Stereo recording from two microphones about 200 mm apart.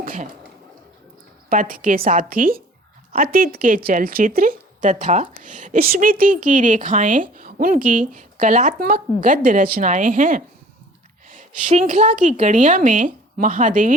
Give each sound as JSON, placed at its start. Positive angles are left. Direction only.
{"t": 0.0, "sound": "speech", "side_deg": -45}
{"t": 1.5, "sound": "speech", "side_deg": -45}